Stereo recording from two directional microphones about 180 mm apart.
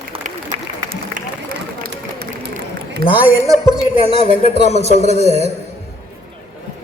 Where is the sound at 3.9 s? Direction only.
35° right (ahead or behind).